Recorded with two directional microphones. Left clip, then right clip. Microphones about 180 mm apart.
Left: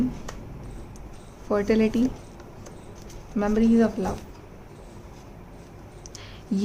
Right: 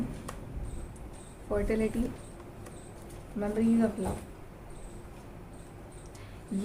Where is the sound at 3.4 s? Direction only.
55° left (ahead or behind).